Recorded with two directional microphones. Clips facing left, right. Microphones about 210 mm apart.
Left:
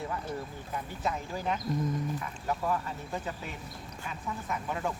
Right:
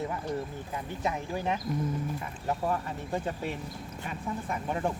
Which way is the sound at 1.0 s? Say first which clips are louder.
Right 2 dB; 15° right (ahead or behind).